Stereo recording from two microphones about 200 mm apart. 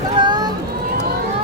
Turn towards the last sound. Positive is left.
turn(degrees=-20)  # may be behind; listen again after turning